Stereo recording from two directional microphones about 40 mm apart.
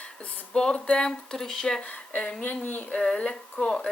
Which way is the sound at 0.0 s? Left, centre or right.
Left.